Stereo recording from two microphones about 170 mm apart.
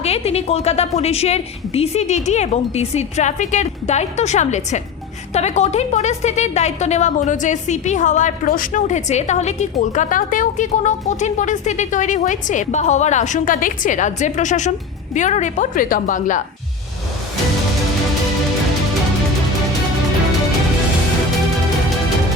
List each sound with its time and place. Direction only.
0.0 s a woman's voice: 35° left (ahead or behind)